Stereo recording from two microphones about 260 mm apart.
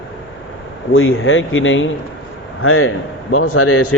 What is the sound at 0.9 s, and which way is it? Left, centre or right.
A man's voice, left.